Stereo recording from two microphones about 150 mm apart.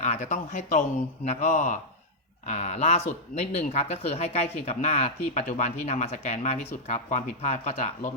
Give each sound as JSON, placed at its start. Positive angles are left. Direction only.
{"t": 0.0, "sound": "speech", "side_deg": 50}